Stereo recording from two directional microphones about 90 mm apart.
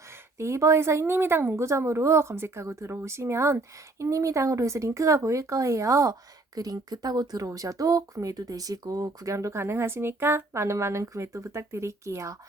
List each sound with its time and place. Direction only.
0.3 s speech: 30° right (ahead or behind)